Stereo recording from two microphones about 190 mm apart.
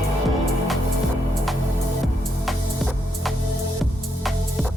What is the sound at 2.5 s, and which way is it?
Music, centre (ahead or behind).